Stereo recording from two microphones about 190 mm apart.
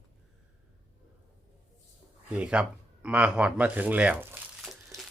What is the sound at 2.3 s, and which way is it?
Speech, 5° right (ahead or behind).